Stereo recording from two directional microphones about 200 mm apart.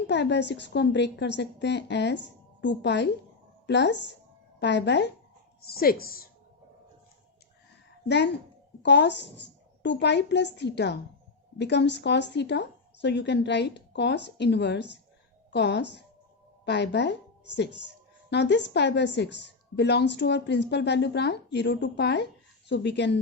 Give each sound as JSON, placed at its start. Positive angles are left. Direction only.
{"t": 0.1, "sound": "a woman's voice", "side_deg": 60}
{"t": 5.6, "sound": "speech", "side_deg": 50}
{"t": 8.0, "sound": "a woman's voice", "side_deg": 60}
{"t": 18.3, "sound": "a woman's voice", "side_deg": 60}